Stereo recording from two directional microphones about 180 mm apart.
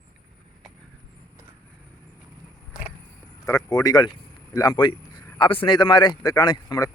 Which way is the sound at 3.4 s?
20° left (ahead or behind).